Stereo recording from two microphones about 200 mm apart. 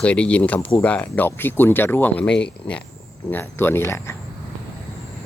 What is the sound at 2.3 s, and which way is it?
Speech, 60° left (ahead or behind).